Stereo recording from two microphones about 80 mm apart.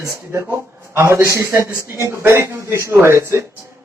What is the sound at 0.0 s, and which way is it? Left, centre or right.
A man's voice, right.